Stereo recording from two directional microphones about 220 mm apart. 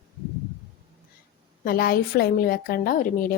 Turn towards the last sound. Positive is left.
turn(degrees=40)  # may be behind; listen again after turning